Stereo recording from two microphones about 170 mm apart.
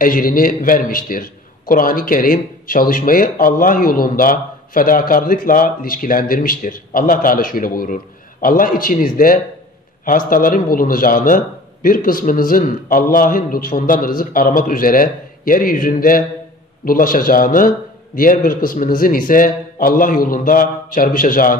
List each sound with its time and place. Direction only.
0.0 s a man's voice: 55° left (ahead or behind)